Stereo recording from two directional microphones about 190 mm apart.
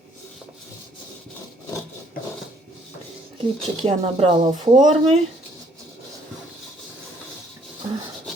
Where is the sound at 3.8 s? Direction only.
40° right (ahead or behind).